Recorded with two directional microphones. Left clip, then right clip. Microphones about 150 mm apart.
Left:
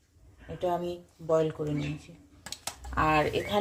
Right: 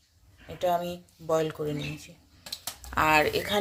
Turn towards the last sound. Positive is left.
turn(degrees=-5)  # may be behind; listen again after turning